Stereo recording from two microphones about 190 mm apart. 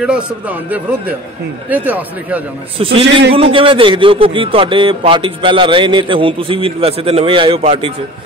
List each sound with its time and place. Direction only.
0.0 s speech: 5° right (ahead or behind)
2.8 s a man's voice: 30° right (ahead or behind)